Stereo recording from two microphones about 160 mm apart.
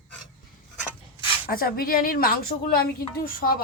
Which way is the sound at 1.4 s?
65° left (ahead or behind).